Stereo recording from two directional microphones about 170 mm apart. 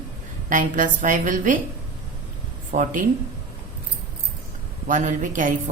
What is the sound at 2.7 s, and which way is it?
Speech, 50° right (ahead or behind).